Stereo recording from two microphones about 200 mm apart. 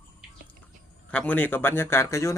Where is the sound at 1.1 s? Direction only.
5° left (ahead or behind).